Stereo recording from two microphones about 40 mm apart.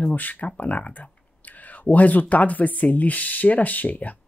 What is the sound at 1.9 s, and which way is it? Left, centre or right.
Speech, left.